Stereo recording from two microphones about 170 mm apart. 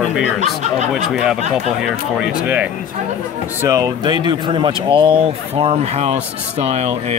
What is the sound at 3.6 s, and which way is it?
Speech, 20° right (ahead or behind).